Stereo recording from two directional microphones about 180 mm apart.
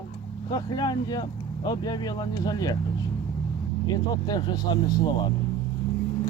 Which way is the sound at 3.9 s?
20° left (ahead or behind).